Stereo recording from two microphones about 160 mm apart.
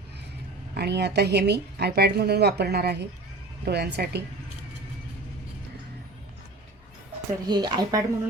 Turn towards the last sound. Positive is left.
turn(degrees=-25)  # may be behind; listen again after turning